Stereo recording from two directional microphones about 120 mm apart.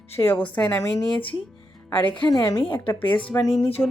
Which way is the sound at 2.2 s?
35° left (ahead or behind).